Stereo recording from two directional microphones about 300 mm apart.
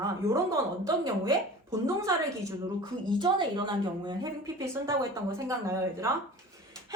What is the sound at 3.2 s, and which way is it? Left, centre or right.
A woman's voice, centre.